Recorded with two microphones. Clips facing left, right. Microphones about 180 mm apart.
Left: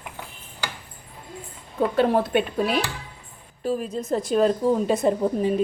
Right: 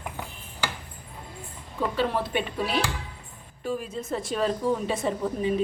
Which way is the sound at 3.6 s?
40° left (ahead or behind).